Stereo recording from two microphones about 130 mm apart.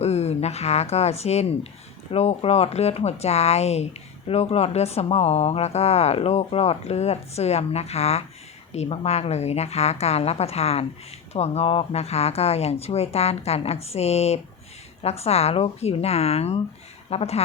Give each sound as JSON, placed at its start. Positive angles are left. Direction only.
{"t": 0.0, "sound": "a woman's voice", "side_deg": 55}